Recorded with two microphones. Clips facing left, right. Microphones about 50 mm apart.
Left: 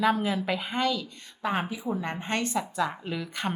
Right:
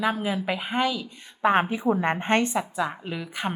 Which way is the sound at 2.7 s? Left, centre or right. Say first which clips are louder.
Right 1 dB; centre.